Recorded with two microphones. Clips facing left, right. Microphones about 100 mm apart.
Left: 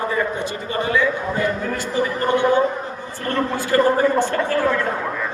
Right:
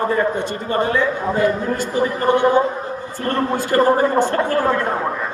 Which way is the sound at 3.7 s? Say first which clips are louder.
Right 1 dB; 40° right (ahead or behind).